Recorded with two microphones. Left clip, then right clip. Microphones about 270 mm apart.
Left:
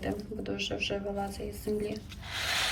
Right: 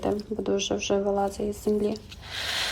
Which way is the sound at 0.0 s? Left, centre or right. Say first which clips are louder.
Right 8 dB; right.